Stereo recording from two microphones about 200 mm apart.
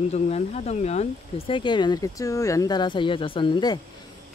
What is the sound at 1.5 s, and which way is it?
Speech, 20° left (ahead or behind).